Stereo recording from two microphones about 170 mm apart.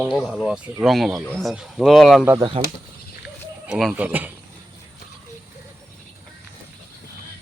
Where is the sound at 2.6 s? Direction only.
30° right (ahead or behind).